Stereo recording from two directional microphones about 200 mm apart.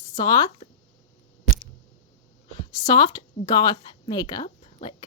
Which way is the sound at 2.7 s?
20° left (ahead or behind).